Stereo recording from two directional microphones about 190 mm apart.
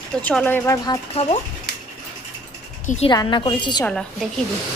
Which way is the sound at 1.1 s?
30° left (ahead or behind).